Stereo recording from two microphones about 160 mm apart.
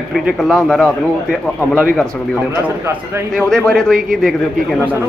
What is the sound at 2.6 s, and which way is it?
Speech, 15° right (ahead or behind).